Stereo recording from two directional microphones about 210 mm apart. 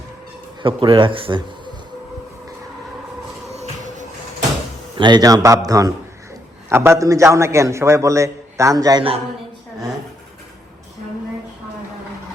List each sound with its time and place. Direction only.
0.6 s speech: 25° right (ahead or behind)
3.5 s music: 35° right (ahead or behind)
4.9 s a man's voice: 20° right (ahead or behind)